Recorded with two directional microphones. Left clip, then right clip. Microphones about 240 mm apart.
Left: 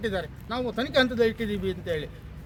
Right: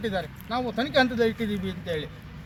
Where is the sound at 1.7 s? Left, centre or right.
Centre.